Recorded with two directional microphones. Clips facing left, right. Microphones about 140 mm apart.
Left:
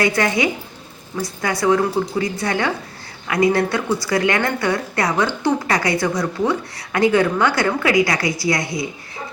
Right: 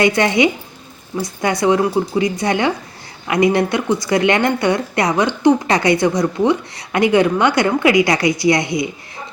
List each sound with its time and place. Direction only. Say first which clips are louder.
0.0 s speech: right 4 dB; 20° right (ahead or behind)